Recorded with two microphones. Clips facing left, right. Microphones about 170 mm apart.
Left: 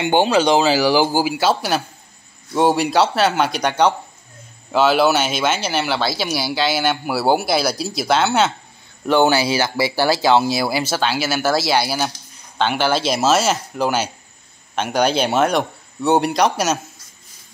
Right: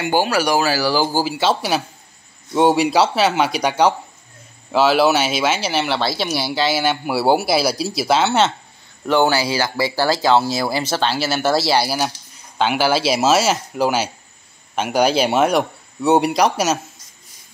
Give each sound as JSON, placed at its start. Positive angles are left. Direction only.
{"t": 0.0, "sound": "speech", "side_deg": 25}
{"t": 9.0, "sound": "speech", "side_deg": 20}